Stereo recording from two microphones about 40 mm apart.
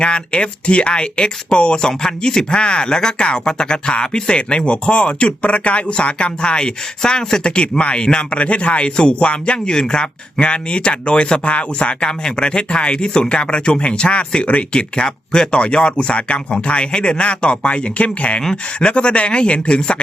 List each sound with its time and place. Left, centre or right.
0.0 s speech: left
1.9 s speech: centre